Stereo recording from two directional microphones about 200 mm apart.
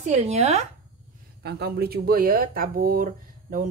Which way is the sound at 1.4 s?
55° right (ahead or behind).